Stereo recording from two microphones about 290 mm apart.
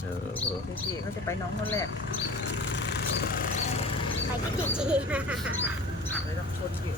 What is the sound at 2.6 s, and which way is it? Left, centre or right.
Vehicle, left.